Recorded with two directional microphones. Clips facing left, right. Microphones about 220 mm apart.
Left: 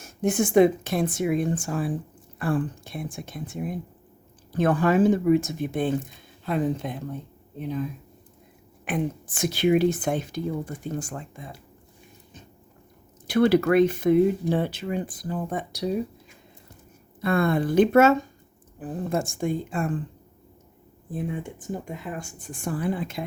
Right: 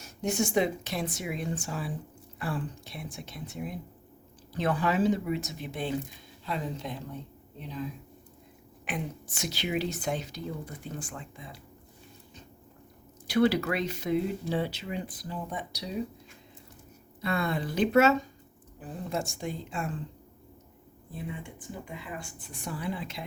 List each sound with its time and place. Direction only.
0.0 s speech: 50° left (ahead or behind)
13.2 s speech: 55° left (ahead or behind)
17.2 s speech: 50° left (ahead or behind)
21.1 s speech: 50° left (ahead or behind)